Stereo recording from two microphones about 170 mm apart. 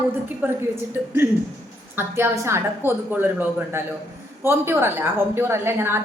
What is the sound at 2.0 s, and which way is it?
A woman's voice, 15° right (ahead or behind).